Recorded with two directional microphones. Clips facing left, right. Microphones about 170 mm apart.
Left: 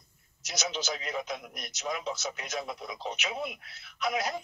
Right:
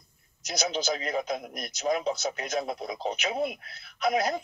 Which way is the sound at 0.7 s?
40° right (ahead or behind).